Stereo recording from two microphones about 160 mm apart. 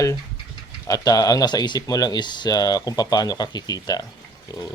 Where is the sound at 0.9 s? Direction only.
20° left (ahead or behind).